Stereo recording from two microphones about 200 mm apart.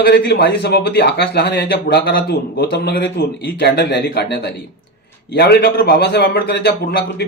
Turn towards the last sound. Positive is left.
turn(degrees=50)  # may be behind; listen again after turning